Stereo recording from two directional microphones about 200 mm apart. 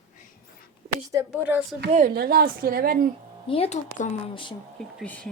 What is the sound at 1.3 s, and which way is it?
Speech, 10° right (ahead or behind).